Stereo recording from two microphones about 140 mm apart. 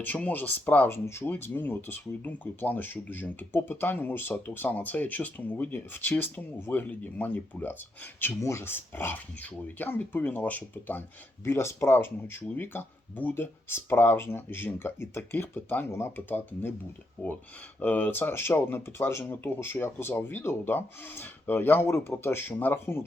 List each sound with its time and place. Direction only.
0.0 s speech: 10° left (ahead or behind)